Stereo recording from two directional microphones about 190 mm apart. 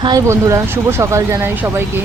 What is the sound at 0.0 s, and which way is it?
Speech, 20° right (ahead or behind).